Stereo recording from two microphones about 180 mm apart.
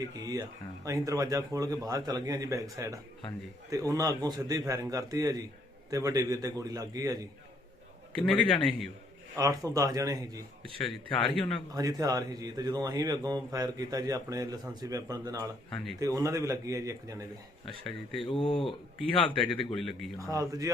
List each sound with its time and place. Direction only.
0.0 s a man's voice: 20° right (ahead or behind)
8.3 s speech: 5° left (ahead or behind)
9.3 s a man's voice: 20° right (ahead or behind)
11.7 s a man's voice: 20° right (ahead or behind)
15.7 s speech: centre (ahead or behind)
16.0 s a man's voice: 20° right (ahead or behind)
17.8 s speech: centre (ahead or behind)
18.3 s speech: 30° left (ahead or behind)
19.5 s speech: centre (ahead or behind)
20.1 s a man's voice: 20° right (ahead or behind)